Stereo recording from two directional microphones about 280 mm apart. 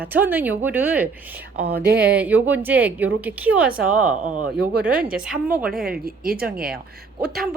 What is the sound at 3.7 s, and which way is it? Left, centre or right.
Speech, right.